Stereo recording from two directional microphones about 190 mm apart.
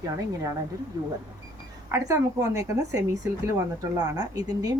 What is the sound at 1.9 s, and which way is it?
Speech, 15° right (ahead or behind).